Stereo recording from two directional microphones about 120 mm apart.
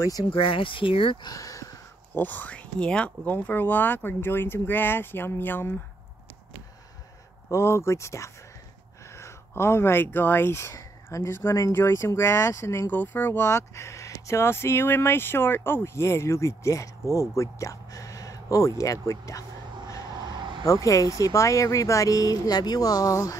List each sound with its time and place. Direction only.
0.0 s speech: 30° left (ahead or behind)
0.3 s speech: 45° left (ahead or behind); by 1.7 s 30° left (ahead or behind)
2.1 s speech: 15° left (ahead or behind)
7.4 s speech: 20° left (ahead or behind)
17.4 s a sound: 25° left (ahead or behind)
18.8 s speech: 25° left (ahead or behind)
20.1 s a sound: 40° right (ahead or behind)
20.6 s speech: 25° left (ahead or behind)